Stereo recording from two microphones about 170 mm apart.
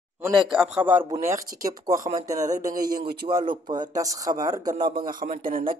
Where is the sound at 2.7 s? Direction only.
55° right (ahead or behind).